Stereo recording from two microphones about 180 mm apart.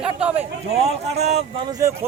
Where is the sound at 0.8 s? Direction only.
35° right (ahead or behind).